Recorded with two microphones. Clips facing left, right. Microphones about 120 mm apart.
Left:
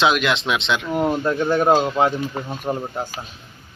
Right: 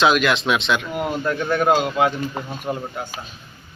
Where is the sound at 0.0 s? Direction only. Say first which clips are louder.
Right 1 dB; 20° left (ahead or behind).